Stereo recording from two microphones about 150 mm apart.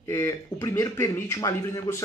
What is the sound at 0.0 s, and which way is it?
A man's voice, 20° left (ahead or behind).